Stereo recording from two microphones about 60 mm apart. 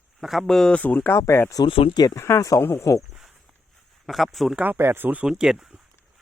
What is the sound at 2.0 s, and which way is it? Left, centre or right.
Speech, left.